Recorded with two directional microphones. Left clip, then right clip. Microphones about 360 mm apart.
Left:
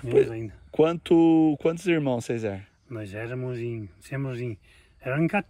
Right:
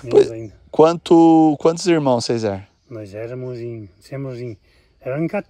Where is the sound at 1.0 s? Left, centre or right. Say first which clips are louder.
Right 8 dB; centre.